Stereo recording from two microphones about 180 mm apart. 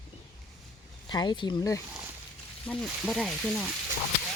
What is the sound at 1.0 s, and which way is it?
Speech, 25° left (ahead or behind).